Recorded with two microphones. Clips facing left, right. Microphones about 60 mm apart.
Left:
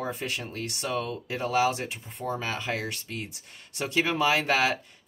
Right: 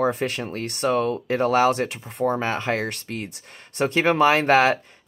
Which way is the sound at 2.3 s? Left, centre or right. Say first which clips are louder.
Right 5 dB; right.